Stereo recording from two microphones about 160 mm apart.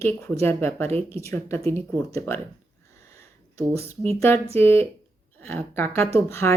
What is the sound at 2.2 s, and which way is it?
Speech, 15° left (ahead or behind).